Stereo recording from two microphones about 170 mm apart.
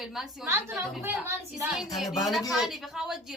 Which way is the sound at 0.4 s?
15° right (ahead or behind).